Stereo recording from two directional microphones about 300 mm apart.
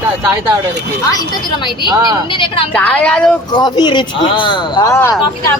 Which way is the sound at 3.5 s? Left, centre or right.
Centre.